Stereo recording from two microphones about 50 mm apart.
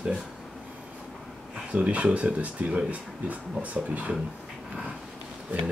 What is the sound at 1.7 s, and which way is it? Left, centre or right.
Speech, right.